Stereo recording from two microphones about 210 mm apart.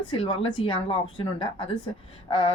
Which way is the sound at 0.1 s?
25° left (ahead or behind).